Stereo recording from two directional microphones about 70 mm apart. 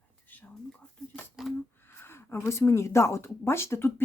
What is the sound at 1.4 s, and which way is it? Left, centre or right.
Typewriter, centre.